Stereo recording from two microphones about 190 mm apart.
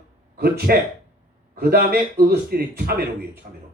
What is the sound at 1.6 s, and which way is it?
Speech, 55° right (ahead or behind).